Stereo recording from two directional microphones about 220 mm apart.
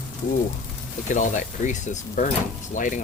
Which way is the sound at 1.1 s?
35° left (ahead or behind).